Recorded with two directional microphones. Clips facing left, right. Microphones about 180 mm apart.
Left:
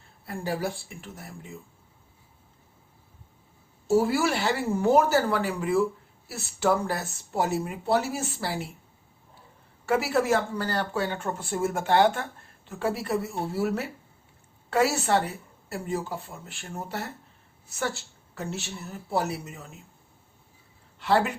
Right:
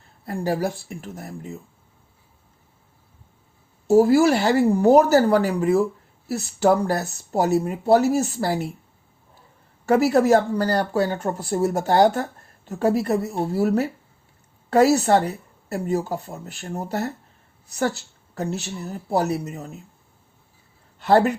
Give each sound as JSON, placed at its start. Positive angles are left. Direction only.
{"t": 0.3, "sound": "speech", "side_deg": -40}
{"t": 3.8, "sound": "speech", "side_deg": -40}
{"t": 9.8, "sound": "speech", "side_deg": -40}
{"t": 21.0, "sound": "speech", "side_deg": -40}